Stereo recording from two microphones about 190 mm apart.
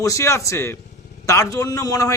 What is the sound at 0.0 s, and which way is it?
A man's voice, 15° left (ahead or behind).